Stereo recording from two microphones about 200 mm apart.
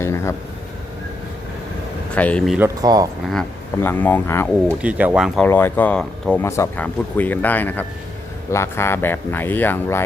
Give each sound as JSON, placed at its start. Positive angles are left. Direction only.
{"t": 0.0, "sound": "a sound", "side_deg": 15}
{"t": 2.1, "sound": "speech", "side_deg": 5}
{"t": 2.6, "sound": "speech", "side_deg": -15}
{"t": 3.3, "sound": "speech", "side_deg": 10}
{"t": 4.8, "sound": "speech", "side_deg": -5}
{"t": 5.5, "sound": "speech", "side_deg": 10}